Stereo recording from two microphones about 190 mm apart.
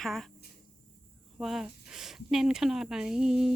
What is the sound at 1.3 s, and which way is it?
Speech, centre (ahead or behind).